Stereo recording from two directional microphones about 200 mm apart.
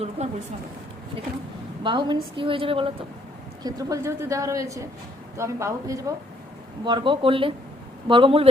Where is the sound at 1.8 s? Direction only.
25° right (ahead or behind).